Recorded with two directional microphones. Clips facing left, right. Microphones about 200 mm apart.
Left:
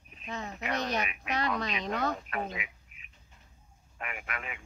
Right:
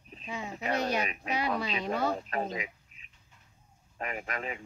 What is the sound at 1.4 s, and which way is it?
Speech, 10° right (ahead or behind).